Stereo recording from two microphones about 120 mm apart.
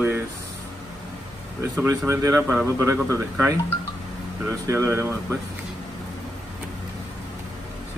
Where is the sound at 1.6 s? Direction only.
20° right (ahead or behind).